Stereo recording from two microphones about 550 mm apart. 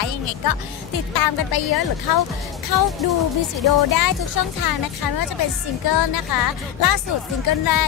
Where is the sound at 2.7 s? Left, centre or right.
Right.